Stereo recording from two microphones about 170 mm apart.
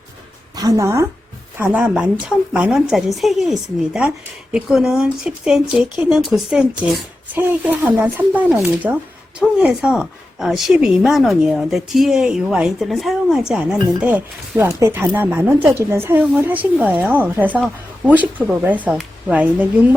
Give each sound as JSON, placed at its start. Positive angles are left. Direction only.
{"t": 0.5, "sound": "a woman's voice", "side_deg": -20}